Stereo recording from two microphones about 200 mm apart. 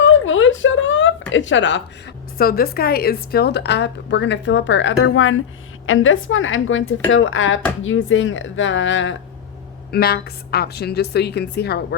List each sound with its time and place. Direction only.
0.0 s a sound: 75° left (ahead or behind)
1.3 s speech: 70° left (ahead or behind)
2.4 s a woman's voice: 50° left (ahead or behind); by 9.1 s 70° left (ahead or behind)
9.9 s a woman's voice: 50° left (ahead or behind)